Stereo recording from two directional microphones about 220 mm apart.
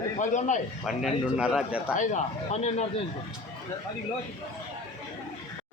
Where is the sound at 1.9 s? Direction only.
30° left (ahead or behind).